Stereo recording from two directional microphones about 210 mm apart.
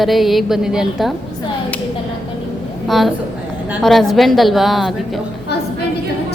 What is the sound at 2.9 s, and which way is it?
A woman's voice, centre (ahead or behind).